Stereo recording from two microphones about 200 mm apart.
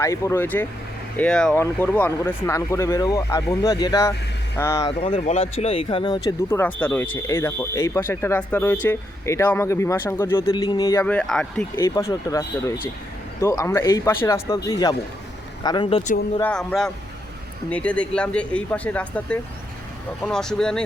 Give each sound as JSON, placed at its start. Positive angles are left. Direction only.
{"t": 0.0, "sound": "speech", "side_deg": 15}
{"t": 4.9, "sound": "speech", "side_deg": 35}
{"t": 11.0, "sound": "speech", "side_deg": 5}
{"t": 11.8, "sound": "speech", "side_deg": 15}
{"t": 16.4, "sound": "speech", "side_deg": 5}